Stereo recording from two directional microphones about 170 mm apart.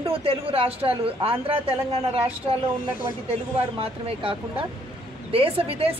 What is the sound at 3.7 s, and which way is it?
Speech, 30° right (ahead or behind).